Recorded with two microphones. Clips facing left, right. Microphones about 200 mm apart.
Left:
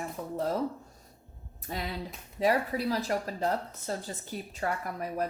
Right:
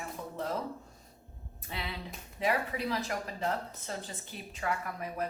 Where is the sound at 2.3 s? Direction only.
40° left (ahead or behind).